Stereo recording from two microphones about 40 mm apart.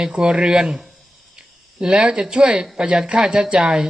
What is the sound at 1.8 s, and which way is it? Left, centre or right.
Speech, centre.